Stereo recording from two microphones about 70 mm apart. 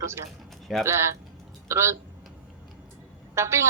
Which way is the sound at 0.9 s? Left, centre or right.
Right.